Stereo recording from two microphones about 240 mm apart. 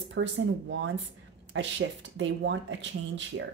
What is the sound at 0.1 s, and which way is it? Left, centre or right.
Speech, right.